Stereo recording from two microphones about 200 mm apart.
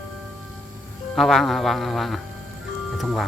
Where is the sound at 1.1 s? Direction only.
Centre (ahead or behind).